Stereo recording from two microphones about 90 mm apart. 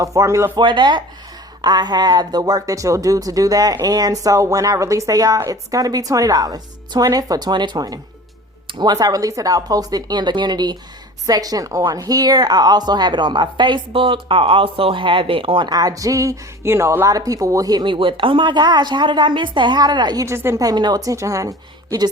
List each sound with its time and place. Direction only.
0.0 s speech: 40° right (ahead or behind)
0.5 s a woman's voice: 60° right (ahead or behind)
2.4 s a woman's voice: 40° right (ahead or behind); by 15.6 s 85° right
15.6 s speech: 45° right (ahead or behind)
17.8 s a woman's voice: 70° right (ahead or behind); by 20.2 s 55° right (ahead or behind)
20.2 s speech: 30° right (ahead or behind)
20.6 s speech: 50° right (ahead or behind)